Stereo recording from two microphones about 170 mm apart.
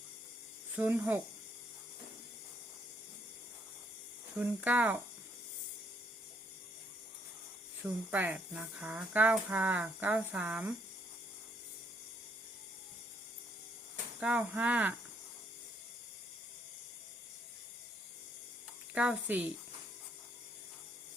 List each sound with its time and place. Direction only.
0.7 s speech: 15° right (ahead or behind)
4.4 s speech: 10° right (ahead or behind)
7.8 s speech: 10° right (ahead or behind)
14.2 s speech: 10° right (ahead or behind)
18.9 s speech: 5° right (ahead or behind)